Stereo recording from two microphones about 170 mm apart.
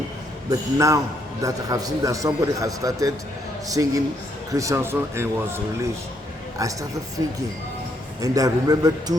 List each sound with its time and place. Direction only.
0.5 s a man's voice: 20° right (ahead or behind)
8.2 s a man's voice: 20° right (ahead or behind)